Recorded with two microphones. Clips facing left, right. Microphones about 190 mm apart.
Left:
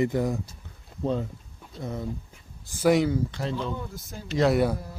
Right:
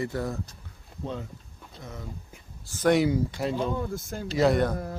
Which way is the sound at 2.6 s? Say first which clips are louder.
Left 1 dB; 10° left (ahead or behind).